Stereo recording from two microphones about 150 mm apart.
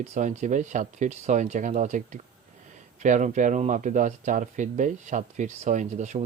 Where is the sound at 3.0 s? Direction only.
55° right (ahead or behind).